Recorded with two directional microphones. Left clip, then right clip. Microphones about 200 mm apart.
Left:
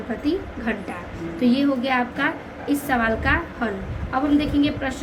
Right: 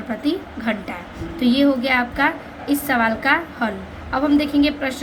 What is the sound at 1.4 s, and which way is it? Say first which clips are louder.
A woman's voice: right 3 dB; 35° right (ahead or behind).